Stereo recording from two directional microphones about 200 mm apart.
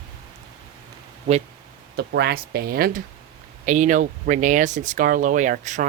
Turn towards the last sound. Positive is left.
turn(degrees=-40)  # may be behind; listen again after turning